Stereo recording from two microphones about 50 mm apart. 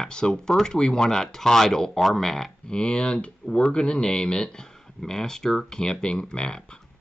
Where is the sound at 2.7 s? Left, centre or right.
Centre.